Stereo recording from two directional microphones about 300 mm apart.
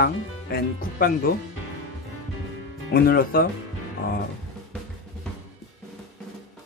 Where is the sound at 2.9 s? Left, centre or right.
Left.